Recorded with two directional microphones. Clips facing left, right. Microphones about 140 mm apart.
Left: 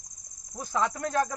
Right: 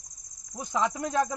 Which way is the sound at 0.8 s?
5° right (ahead or behind).